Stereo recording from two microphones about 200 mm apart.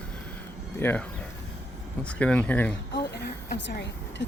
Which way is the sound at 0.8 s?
10° left (ahead or behind).